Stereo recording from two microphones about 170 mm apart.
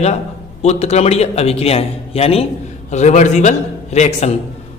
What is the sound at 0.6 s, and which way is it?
A man's voice, 40° left (ahead or behind).